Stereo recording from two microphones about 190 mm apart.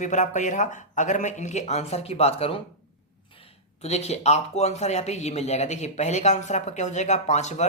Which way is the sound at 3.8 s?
35° left (ahead or behind).